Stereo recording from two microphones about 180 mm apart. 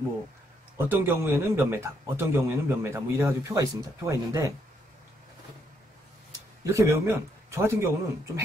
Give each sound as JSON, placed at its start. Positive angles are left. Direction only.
{"t": 0.7, "sound": "a man's voice", "side_deg": -10}
{"t": 6.6, "sound": "a man's voice", "side_deg": -15}